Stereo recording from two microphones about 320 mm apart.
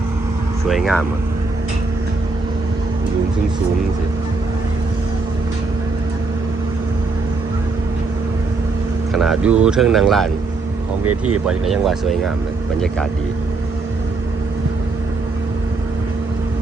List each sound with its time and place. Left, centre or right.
0.7 s speech: centre
9.1 s speech: centre
11.0 s speech: right
11.4 s speech: centre